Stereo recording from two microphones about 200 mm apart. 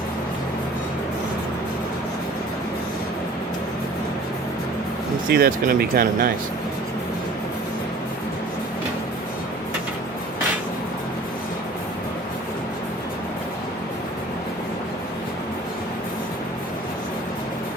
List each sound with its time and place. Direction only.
5.3 s speech: 50° right (ahead or behind)